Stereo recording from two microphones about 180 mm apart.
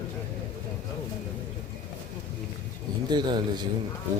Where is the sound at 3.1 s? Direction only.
25° right (ahead or behind).